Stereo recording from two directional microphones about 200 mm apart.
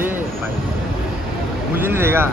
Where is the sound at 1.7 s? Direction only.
10° right (ahead or behind).